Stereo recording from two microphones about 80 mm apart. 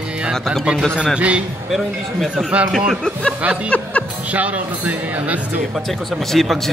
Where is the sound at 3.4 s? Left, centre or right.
Centre.